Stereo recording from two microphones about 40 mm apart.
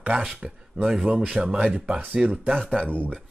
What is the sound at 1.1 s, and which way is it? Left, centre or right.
Speech, right.